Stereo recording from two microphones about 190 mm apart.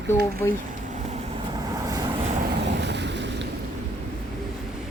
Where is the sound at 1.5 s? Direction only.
20° right (ahead or behind).